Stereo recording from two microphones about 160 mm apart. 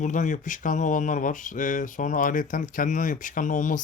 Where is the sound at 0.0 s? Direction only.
55° left (ahead or behind).